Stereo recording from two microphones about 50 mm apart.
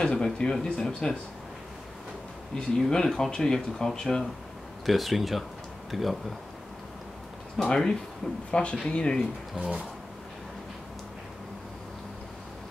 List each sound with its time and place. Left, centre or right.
0.0 s speech: centre
2.5 s speech: centre
4.8 s speech: centre
7.6 s speech: centre